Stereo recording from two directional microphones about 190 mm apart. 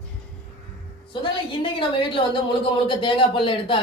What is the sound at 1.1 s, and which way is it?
Speech, 25° left (ahead or behind).